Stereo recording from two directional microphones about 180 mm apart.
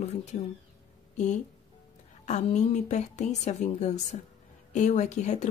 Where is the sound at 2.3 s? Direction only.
40° left (ahead or behind).